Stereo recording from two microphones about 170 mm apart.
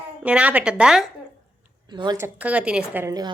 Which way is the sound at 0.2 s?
10° right (ahead or behind).